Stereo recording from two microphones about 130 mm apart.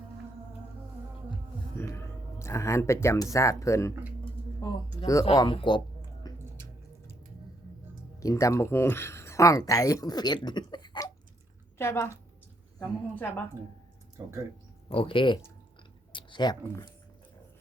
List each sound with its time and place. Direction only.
1.8 s speech: 20° left (ahead or behind)
4.6 s a sound: 25° left (ahead or behind)
5.1 s a woman's voice: 25° left (ahead or behind)
5.4 s speech: 40° left (ahead or behind)
6.3 s music: 30° left (ahead or behind)
8.2 s speech: 25° left (ahead or behind)
11.8 s a woman's voice: 20° left (ahead or behind)
14.8 s speech: 45° left (ahead or behind)
16.1 s a sound: 35° left (ahead or behind)